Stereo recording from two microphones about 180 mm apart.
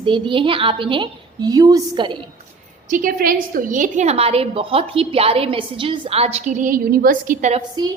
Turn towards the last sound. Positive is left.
turn(degrees=-20)  # may be behind; listen again after turning